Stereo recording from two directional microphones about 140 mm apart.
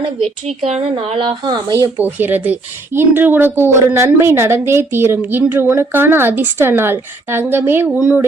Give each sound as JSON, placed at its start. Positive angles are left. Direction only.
{"t": 0.0, "sound": "speech", "side_deg": -45}
{"t": 1.5, "sound": "speech", "side_deg": -25}
{"t": 2.0, "sound": "speech", "side_deg": -15}